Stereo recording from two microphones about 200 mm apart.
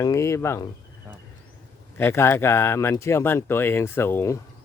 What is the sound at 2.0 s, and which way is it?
Speech, 10° left (ahead or behind).